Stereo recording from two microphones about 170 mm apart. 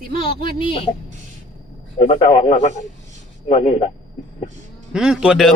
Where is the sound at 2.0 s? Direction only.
35° left (ahead or behind).